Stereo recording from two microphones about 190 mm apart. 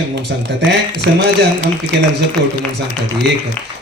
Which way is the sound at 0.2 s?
65° right (ahead or behind).